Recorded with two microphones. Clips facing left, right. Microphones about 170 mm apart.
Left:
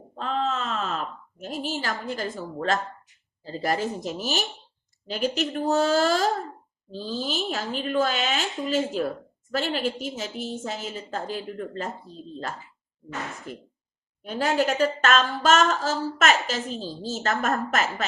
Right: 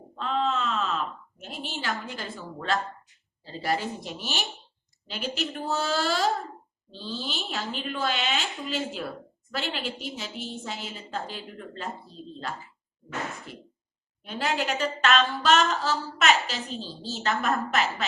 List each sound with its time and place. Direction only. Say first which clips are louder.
0.2 s a sound: even; 40° left (ahead or behind)
3.4 s speech: left 3 dB; 40° left (ahead or behind)
13.5 s speech: left 5 dB; 45° left (ahead or behind)